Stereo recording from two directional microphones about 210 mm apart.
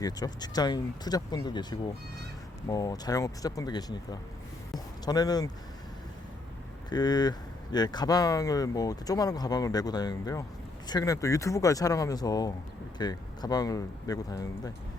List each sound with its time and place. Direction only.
0.0 s speech: 20° left (ahead or behind)
2.6 s speech: 15° left (ahead or behind)
6.9 s speech: 20° left (ahead or behind)